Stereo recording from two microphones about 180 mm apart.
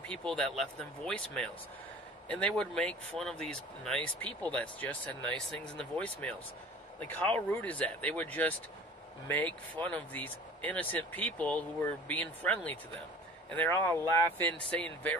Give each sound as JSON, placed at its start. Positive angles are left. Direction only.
{"t": 0.0, "sound": "speech", "side_deg": 5}
{"t": 9.8, "sound": "speech", "side_deg": 10}